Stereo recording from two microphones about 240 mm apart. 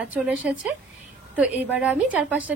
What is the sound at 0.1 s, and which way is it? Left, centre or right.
A woman's voice, centre.